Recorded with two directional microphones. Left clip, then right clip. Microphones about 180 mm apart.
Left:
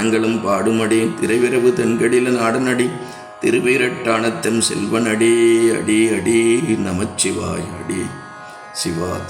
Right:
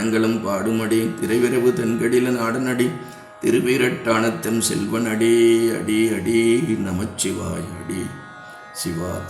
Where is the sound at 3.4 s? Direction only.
25° right (ahead or behind).